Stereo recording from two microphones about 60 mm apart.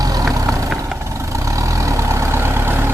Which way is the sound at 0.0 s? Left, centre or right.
Right.